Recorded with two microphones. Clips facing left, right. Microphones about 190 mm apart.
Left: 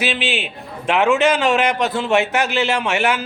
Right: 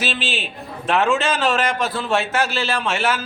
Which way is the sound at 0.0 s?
15° left (ahead or behind).